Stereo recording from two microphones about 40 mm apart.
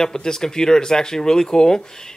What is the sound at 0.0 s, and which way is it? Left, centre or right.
Speech, centre.